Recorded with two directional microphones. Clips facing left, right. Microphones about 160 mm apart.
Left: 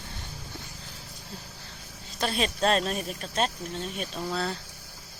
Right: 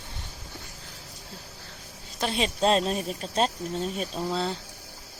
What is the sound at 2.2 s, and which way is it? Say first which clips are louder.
Speech: right 1 dB; 20° right (ahead or behind).